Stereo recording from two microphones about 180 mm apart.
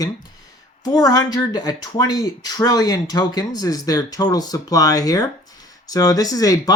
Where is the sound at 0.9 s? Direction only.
20° left (ahead or behind).